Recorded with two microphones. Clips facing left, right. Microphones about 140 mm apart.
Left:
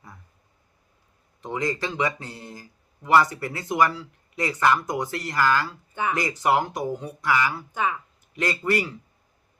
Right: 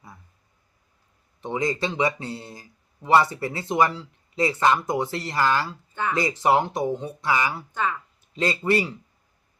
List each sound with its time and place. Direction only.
1.4 s speech: 20° right (ahead or behind)
5.9 s speech: 15° left (ahead or behind)
6.1 s speech: 25° right (ahead or behind)
7.7 s speech: 10° left (ahead or behind)
8.3 s speech: 25° right (ahead or behind)